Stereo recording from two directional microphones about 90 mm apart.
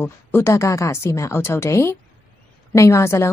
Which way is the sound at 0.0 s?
25° left (ahead or behind).